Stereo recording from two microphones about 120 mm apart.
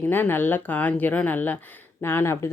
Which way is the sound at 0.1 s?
15° left (ahead or behind).